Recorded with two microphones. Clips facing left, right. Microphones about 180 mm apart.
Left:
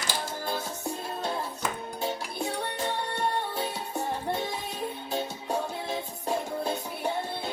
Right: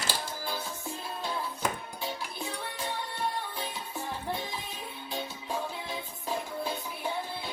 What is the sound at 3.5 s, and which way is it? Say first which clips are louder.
Music: left 6 dB; 45° left (ahead or behind).